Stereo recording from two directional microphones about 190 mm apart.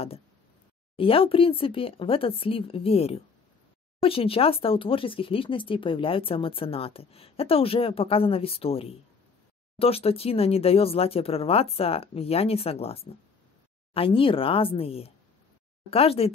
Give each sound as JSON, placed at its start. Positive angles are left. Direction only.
{"t": 0.9, "sound": "speech", "side_deg": 30}